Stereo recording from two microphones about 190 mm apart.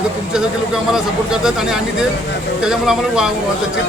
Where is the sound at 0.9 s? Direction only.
5° right (ahead or behind).